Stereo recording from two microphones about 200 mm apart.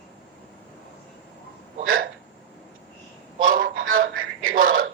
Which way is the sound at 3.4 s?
45° right (ahead or behind).